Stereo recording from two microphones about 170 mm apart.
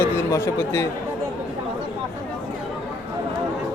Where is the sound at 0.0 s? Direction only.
15° left (ahead or behind).